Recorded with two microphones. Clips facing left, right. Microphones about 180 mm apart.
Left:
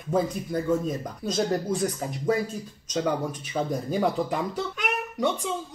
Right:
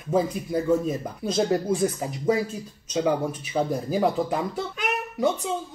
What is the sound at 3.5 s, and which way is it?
Speech, centre (ahead or behind).